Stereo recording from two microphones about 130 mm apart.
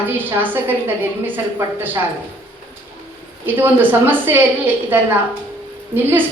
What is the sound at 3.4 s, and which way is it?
A woman's voice, 15° right (ahead or behind).